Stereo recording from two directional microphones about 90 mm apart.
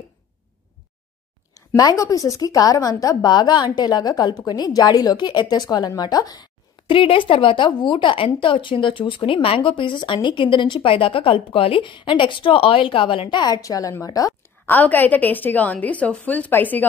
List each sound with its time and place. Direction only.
1.8 s a woman's voice: 45° left (ahead or behind)
6.9 s a woman's voice: 75° left (ahead or behind); by 14.3 s 40° left (ahead or behind)
14.4 s a woman's voice: 20° left (ahead or behind)